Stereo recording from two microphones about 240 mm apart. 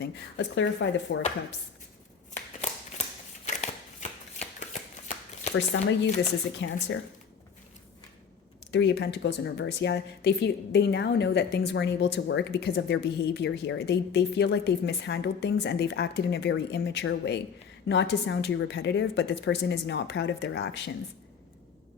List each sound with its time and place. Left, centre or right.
0.0 s a woman's voice: left
2.6 s a sound: left
3.4 s shuffling cards: left
5.5 s a woman's voice: left
8.7 s a woman's voice: left